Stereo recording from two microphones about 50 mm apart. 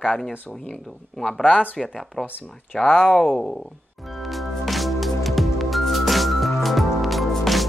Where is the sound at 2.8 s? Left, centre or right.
Centre.